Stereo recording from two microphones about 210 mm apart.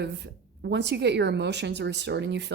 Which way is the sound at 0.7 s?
55° right (ahead or behind).